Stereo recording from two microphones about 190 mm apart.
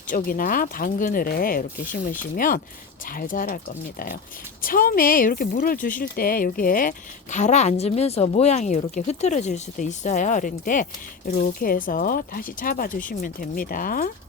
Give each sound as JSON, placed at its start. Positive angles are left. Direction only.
{"t": 0.1, "sound": "speech", "side_deg": 45}